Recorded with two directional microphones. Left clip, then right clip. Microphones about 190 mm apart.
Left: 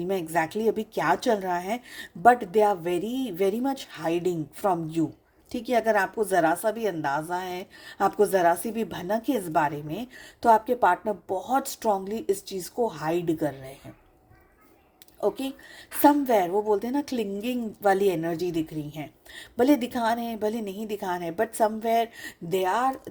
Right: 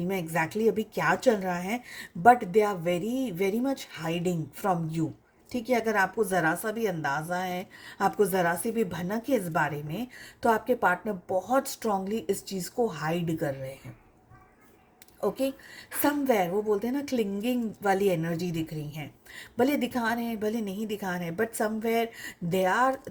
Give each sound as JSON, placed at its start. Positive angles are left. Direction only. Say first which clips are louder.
{"t": 0.1, "sound": "a woman's voice", "louder": "left 3 dB", "side_deg": 50}
{"t": 16.0, "sound": "a woman's voice", "louder": "left 5 dB", "side_deg": 45}